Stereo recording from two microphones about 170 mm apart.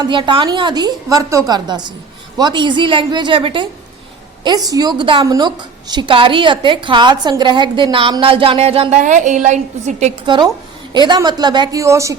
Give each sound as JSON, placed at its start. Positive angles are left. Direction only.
{"t": 0.0, "sound": "a woman's voice", "side_deg": -30}
{"t": 4.7, "sound": "a woman's voice", "side_deg": -25}
{"t": 9.0, "sound": "a woman's voice", "side_deg": -45}
{"t": 10.2, "sound": "a woman's voice", "side_deg": -25}